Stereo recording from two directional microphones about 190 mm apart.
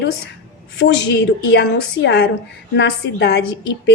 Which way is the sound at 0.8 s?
65° left (ahead or behind).